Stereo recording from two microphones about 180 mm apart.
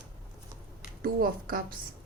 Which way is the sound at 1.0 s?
55° right (ahead or behind).